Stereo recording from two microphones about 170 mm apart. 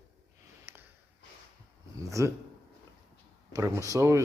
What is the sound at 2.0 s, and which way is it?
Speech, 20° right (ahead or behind).